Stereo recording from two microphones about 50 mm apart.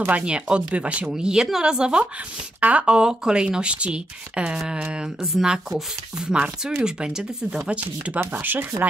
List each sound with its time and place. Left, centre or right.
0.1 s speech: right
1.1 s speech: centre
7.7 s speech: right
8.3 s speech: right